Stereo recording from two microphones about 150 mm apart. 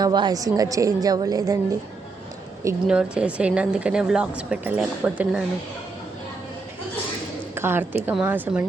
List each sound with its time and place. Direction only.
0.0 s a woman's voice: 25° right (ahead or behind)
2.8 s a woman's voice: 5° right (ahead or behind)
7.5 s a woman's voice: 15° right (ahead or behind)